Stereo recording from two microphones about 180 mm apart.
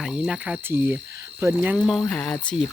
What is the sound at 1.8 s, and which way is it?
Speech, 5° left (ahead or behind).